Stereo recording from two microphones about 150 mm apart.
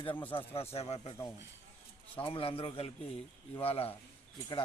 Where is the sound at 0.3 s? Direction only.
40° left (ahead or behind).